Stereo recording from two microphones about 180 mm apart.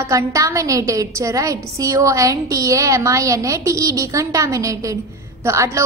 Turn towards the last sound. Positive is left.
turn(degrees=-15)  # may be behind; listen again after turning